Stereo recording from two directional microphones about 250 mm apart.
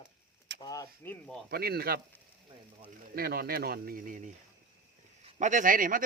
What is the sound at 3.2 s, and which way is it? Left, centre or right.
A man's voice, right.